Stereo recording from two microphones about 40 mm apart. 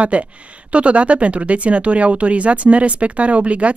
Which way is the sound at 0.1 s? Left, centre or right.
Right.